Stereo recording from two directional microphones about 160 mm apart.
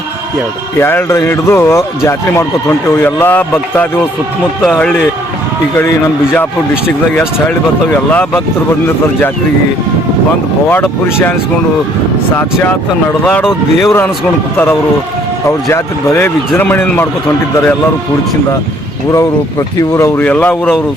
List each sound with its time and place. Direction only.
0.8 s speech: 15° left (ahead or behind)
8.1 s speech: 10° left (ahead or behind)
10.7 s speech: 10° left (ahead or behind)
13.4 s speech: 5° right (ahead or behind)
15.7 s speech: 15° left (ahead or behind)
19.9 s speech: 15° left (ahead or behind)